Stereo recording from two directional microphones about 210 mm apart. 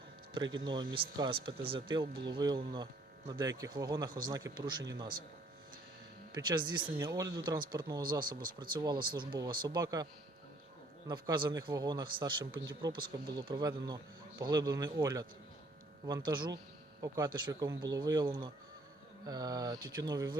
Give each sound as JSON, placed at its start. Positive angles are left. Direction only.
{"t": 0.6, "sound": "speech", "side_deg": -20}
{"t": 6.3, "sound": "speech", "side_deg": -20}
{"t": 8.2, "sound": "speech", "side_deg": -45}
{"t": 8.5, "sound": "speech", "side_deg": -20}
{"t": 11.1, "sound": "speech", "side_deg": -20}